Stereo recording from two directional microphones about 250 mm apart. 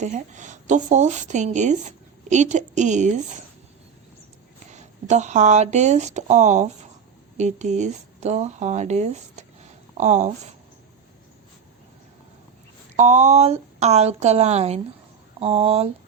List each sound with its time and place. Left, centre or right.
0.0 s a woman's voice: right
4.7 s a woman's voice: right
13.0 s a woman's voice: right